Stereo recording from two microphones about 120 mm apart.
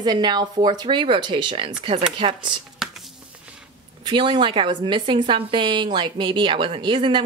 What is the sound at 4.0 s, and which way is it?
A woman's voice, 40° right (ahead or behind).